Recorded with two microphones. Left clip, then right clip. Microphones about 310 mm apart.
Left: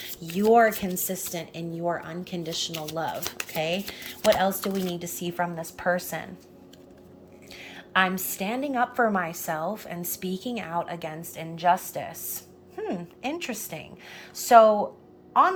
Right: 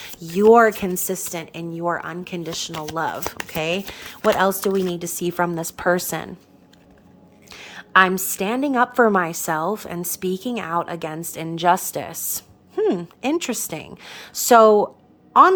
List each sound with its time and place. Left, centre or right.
0.0 s a sound: centre
0.5 s a woman's voice: centre
7.5 s a woman's voice: centre